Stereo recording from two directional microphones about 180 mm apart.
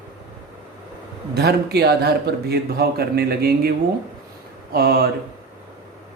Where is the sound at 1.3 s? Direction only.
65° right (ahead or behind).